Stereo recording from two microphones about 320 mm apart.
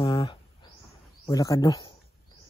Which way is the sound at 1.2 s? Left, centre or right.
Centre.